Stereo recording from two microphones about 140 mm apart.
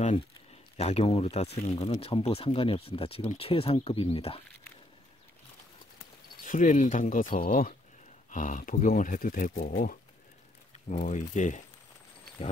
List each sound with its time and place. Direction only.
0.7 s speech: 50° left (ahead or behind)
6.4 s speech: 65° left (ahead or behind); by 7.7 s 80° left
8.3 s speech: 70° left (ahead or behind); by 9.9 s 85° left
10.9 s speech: 60° left (ahead or behind)